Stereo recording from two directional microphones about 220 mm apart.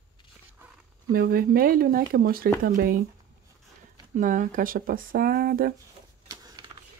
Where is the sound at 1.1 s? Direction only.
40° right (ahead or behind).